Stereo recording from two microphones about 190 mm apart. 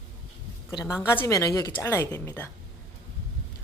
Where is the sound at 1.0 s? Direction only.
15° left (ahead or behind).